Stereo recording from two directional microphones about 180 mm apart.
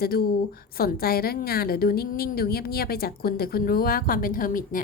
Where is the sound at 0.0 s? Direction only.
60° left (ahead or behind).